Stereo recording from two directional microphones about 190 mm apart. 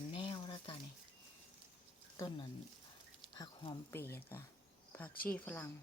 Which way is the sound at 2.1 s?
20° left (ahead or behind).